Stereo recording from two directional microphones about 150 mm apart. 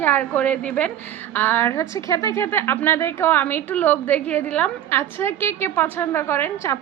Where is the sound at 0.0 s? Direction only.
10° left (ahead or behind).